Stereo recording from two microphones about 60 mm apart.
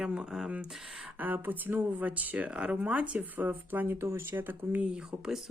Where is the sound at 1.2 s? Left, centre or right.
Right.